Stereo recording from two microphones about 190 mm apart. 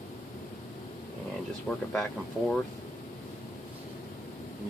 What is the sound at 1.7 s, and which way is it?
Speech, 5° left (ahead or behind).